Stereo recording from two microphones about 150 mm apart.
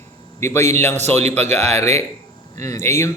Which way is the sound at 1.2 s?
45° right (ahead or behind).